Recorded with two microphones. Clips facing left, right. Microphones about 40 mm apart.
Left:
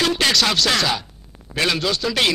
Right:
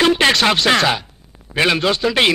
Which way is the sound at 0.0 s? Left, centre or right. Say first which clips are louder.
Right 5 dB; right.